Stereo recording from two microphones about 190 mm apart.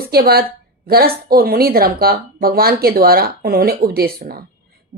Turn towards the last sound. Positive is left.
turn(degrees=-55)  # may be behind; listen again after turning